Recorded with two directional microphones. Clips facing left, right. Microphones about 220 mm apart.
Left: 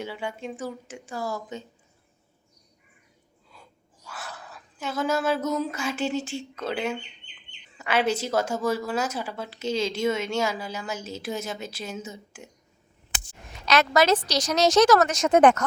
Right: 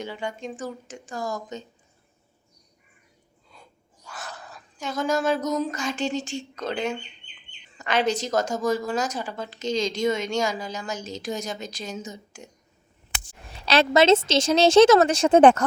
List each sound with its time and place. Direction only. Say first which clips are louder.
0.0 s a woman's voice: right 1 dB; 5° left (ahead or behind)
4.0 s a woman's voice: right 1 dB; 5° left (ahead or behind)
13.5 s a woman's voice: right 2 dB; 30° right (ahead or behind)